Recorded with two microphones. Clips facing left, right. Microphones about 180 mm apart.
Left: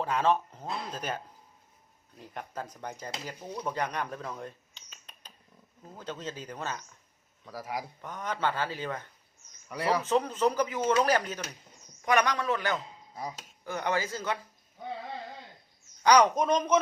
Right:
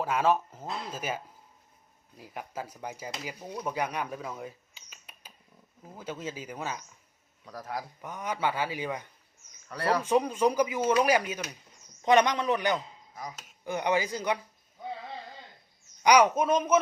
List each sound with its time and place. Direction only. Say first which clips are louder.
0.0 s speech: right 1 dB; 5° right (ahead or behind)
7.4 s a man's voice: left 1 dB; 5° left (ahead or behind)
8.0 s speech: right 1 dB; 10° right (ahead or behind)
9.6 s a man's voice: right 1 dB; 10° left (ahead or behind)
10.0 s speech: right 3 dB; 10° right (ahead or behind)
12.0 s a man's voice: right 4 dB; 20° right (ahead or behind)
13.1 s dishes: left 3 dB; 30° left (ahead or behind)
13.7 s speech: right 3 dB; 15° right (ahead or behind)
16.0 s a woman's voice: right 1 dB; 10° right (ahead or behind)